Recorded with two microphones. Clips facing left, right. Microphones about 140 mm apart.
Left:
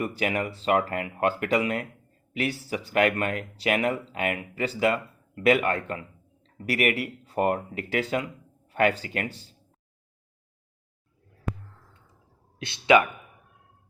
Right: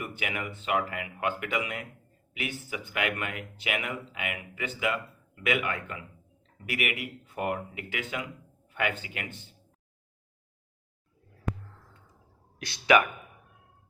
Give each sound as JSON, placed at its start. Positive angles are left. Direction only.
{"t": 0.0, "sound": "speech", "side_deg": 35}
{"t": 12.5, "sound": "speech", "side_deg": 25}